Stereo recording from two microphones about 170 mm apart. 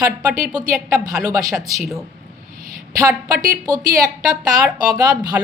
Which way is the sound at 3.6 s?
20° right (ahead or behind).